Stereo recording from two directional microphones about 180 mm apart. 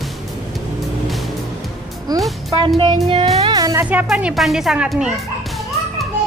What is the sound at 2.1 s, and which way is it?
Music, 20° right (ahead or behind).